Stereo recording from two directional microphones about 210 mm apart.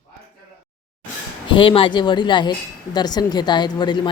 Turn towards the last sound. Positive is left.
turn(degrees=20)  # may be behind; listen again after turning